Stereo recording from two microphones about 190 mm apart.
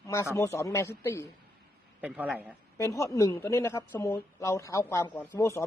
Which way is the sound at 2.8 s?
15° left (ahead or behind).